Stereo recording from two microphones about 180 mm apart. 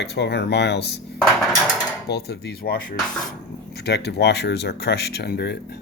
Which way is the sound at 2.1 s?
65° left (ahead or behind).